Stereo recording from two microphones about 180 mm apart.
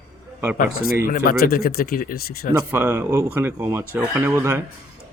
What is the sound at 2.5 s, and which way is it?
Speech, 10° right (ahead or behind).